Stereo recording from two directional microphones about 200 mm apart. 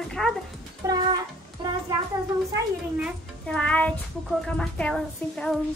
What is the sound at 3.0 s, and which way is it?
A woman's voice, 5° left (ahead or behind).